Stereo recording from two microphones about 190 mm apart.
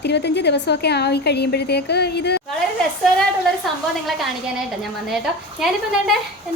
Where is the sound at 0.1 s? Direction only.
65° left (ahead or behind).